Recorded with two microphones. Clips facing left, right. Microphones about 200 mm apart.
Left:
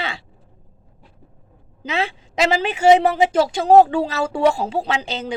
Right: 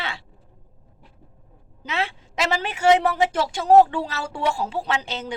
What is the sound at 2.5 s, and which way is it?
Speech, 90° left.